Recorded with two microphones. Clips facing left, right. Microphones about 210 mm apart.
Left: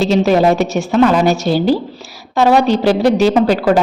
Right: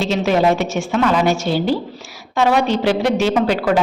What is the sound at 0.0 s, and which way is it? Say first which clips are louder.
A woman's voice: left 4 dB; 35° left (ahead or behind).